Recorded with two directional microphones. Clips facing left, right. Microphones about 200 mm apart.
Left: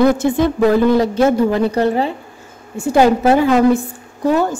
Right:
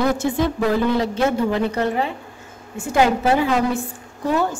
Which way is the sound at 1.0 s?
40° left (ahead or behind).